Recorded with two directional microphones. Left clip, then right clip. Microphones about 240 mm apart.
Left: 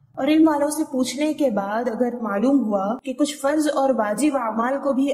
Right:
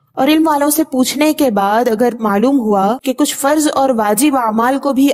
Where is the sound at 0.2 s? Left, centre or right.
Right.